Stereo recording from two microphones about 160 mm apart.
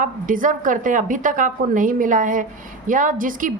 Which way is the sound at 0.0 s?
55° right (ahead or behind).